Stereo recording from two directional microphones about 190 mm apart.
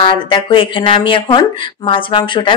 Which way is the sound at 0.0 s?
25° left (ahead or behind).